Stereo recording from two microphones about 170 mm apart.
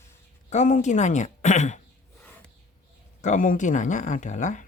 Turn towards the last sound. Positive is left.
turn(degrees=45)  # may be behind; listen again after turning